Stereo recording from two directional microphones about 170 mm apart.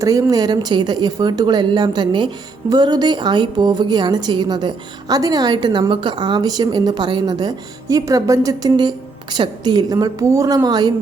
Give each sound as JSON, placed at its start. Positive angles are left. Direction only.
{"t": 0.0, "sound": "speech", "side_deg": -20}